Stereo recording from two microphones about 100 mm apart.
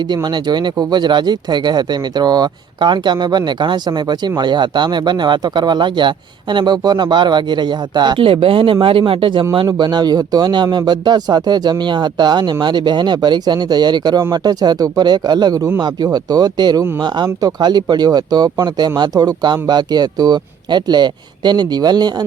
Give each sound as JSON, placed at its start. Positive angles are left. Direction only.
{"t": 0.1, "sound": "speech", "side_deg": -45}
{"t": 8.2, "sound": "speech", "side_deg": -65}
{"t": 9.6, "sound": "speech", "side_deg": -45}